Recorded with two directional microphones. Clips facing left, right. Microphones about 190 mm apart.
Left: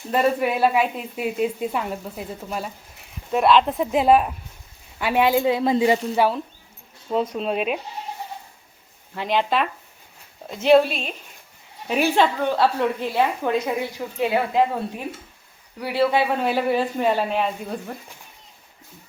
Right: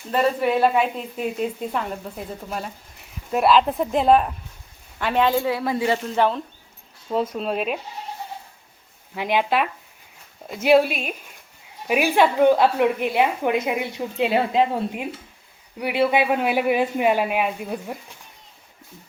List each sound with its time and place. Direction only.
0.1 s a woman's voice: 10° left (ahead or behind)
6.0 s a woman's voice: 5° left (ahead or behind)
9.1 s a woman's voice: 10° right (ahead or behind)